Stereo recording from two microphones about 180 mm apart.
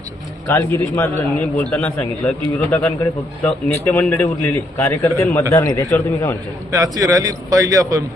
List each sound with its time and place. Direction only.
0.4 s a man's voice: 15° left (ahead or behind)
6.7 s a man's voice: 20° right (ahead or behind)